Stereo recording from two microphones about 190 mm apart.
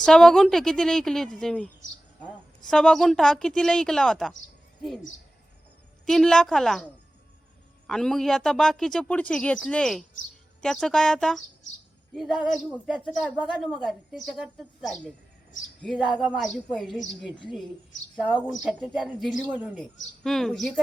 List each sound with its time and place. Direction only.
0.0 s speech: 5° left (ahead or behind)
2.6 s speech: 5° left (ahead or behind)
6.1 s speech: centre (ahead or behind)
18.6 s speech: centre (ahead or behind)